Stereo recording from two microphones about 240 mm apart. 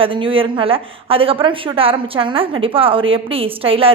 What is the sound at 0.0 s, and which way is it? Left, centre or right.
A woman's voice, right.